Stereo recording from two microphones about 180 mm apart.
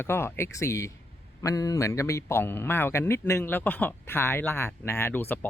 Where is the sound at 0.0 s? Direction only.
10° left (ahead or behind).